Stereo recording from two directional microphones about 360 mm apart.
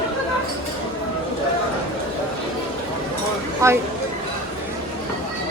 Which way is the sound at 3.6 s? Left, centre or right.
Centre.